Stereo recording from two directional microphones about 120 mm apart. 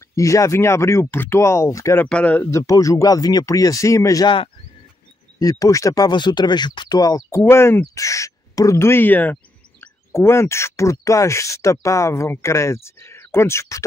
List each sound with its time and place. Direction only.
0.1 s speech: 25° left (ahead or behind)
2.0 s speech: 10° left (ahead or behind)
2.5 s speech: 25° left (ahead or behind)
5.4 s speech: 30° left (ahead or behind)